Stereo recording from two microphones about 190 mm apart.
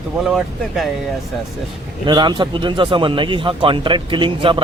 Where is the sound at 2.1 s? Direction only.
25° right (ahead or behind).